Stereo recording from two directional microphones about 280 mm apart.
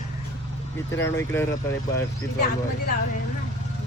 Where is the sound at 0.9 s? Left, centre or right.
Centre.